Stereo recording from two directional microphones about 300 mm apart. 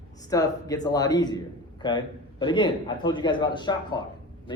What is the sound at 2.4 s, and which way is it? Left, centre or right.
Speech, centre.